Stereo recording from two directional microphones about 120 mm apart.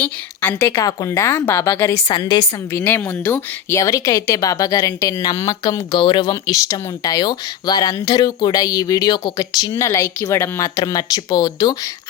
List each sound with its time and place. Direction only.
0.0 s a woman's voice: 20° left (ahead or behind)
2.0 s speech: 35° left (ahead or behind)
2.8 s speech: 15° left (ahead or behind); by 11.8 s 30° left (ahead or behind)